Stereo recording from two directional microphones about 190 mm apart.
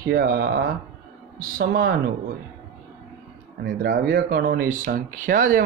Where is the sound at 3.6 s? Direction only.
55° right (ahead or behind).